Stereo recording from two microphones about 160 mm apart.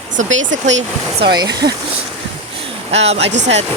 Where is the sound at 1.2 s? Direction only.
25° right (ahead or behind).